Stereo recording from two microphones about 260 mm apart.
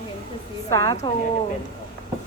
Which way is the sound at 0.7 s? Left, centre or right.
Centre.